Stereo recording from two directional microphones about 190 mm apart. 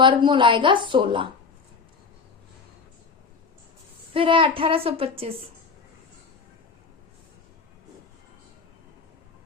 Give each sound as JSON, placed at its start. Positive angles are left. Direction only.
{"t": 0.0, "sound": "a woman's voice", "side_deg": -25}
{"t": 4.1, "sound": "a woman's voice", "side_deg": -30}